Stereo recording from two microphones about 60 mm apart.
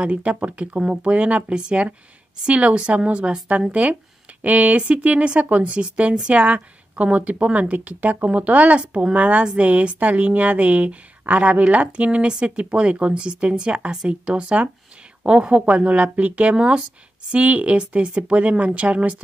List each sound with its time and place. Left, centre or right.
0.0 s speech: centre